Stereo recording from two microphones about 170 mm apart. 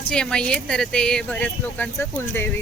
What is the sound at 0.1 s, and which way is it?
Speech, 5° left (ahead or behind).